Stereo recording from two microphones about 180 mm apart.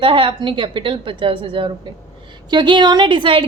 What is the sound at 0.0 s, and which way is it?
A woman's voice, 30° right (ahead or behind).